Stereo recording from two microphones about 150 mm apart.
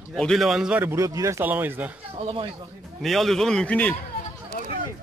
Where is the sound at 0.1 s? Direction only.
Centre (ahead or behind).